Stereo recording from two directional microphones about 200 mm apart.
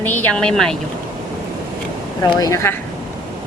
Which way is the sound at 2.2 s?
15° left (ahead or behind).